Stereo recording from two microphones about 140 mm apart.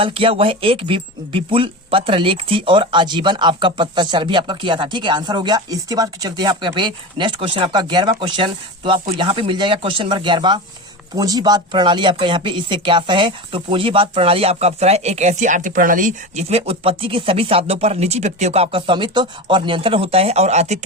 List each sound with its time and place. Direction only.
0.0 s speech: 40° right (ahead or behind)